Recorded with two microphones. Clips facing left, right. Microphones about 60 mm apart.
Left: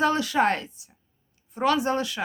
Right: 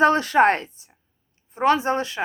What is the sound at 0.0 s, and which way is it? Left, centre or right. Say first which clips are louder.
A woman's voice: right 6 dB; right.